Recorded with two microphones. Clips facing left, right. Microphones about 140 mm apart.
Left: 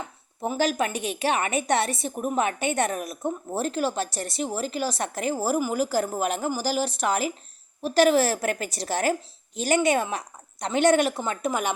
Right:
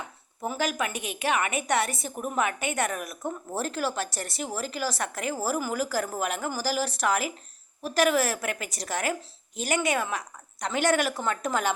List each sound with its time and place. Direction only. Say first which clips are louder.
0.4 s a woman's voice: left 4 dB; 30° left (ahead or behind)